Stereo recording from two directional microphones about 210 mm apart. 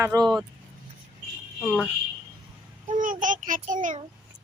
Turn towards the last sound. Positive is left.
turn(degrees=-40)  # may be behind; listen again after turning